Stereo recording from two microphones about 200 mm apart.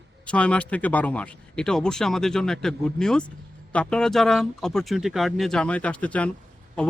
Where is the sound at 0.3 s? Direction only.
5° left (ahead or behind).